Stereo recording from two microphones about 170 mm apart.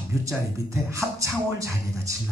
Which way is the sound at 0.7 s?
15° right (ahead or behind).